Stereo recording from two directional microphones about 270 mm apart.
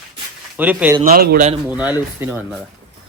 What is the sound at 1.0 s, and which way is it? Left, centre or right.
Speech, right.